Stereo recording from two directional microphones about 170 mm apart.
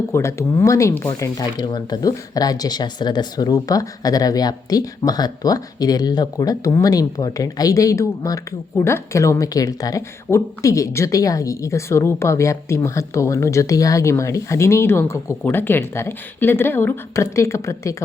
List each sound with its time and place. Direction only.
0.1 s speech: 15° left (ahead or behind)